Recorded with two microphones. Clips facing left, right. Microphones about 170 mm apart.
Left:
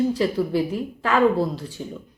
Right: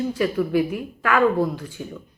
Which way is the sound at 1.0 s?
25° left (ahead or behind).